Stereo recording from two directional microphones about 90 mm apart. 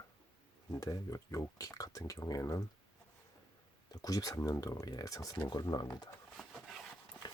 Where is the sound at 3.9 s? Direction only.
40° left (ahead or behind).